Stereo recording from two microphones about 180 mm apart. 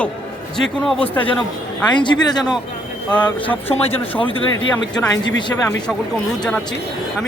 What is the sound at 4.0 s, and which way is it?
Speech, 30° left (ahead or behind).